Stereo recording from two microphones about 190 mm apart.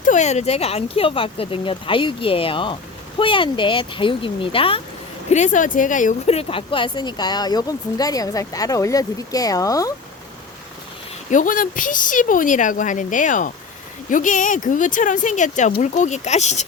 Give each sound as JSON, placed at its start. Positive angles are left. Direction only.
{"t": 0.0, "sound": "speech", "side_deg": 40}
{"t": 5.3, "sound": "speech", "side_deg": 40}
{"t": 11.3, "sound": "speech", "side_deg": 45}